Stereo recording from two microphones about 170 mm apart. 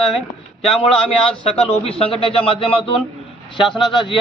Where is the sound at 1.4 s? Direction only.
35° left (ahead or behind).